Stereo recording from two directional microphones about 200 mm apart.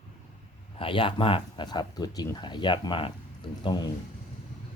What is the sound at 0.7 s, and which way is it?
Speech, 25° left (ahead or behind).